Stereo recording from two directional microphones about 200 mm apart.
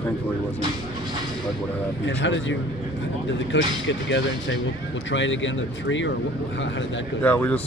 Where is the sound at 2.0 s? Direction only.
65° left (ahead or behind).